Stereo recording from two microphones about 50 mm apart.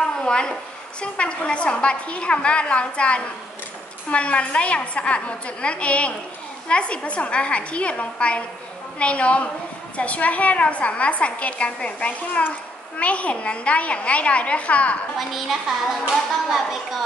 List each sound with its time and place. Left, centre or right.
0.0 s a sound: centre
1.0 s a woman's voice: left
15.1 s a child's voice: centre